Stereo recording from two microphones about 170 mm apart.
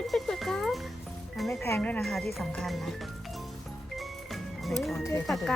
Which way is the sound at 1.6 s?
10° left (ahead or behind).